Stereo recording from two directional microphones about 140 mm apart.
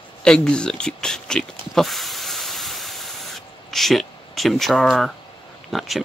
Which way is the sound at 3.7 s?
Centre (ahead or behind).